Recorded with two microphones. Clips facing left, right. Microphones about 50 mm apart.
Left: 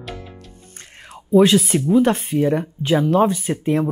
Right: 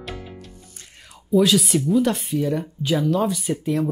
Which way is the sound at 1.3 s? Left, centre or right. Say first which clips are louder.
Left 4 dB; left.